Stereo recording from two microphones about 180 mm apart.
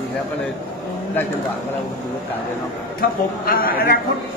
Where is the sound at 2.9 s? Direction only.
55° left (ahead or behind).